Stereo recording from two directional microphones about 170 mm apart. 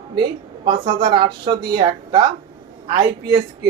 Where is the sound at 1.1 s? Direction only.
30° right (ahead or behind).